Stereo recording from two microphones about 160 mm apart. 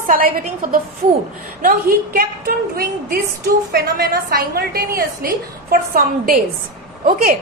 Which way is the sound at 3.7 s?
80° right.